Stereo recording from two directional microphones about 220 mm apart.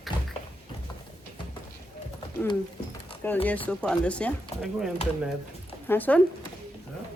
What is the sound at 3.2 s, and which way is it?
A woman's voice, 10° left (ahead or behind).